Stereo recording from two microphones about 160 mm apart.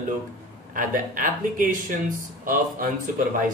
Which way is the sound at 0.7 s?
55° right (ahead or behind).